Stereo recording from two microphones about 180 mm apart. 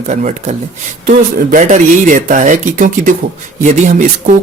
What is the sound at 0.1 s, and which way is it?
Speech, 40° right (ahead or behind).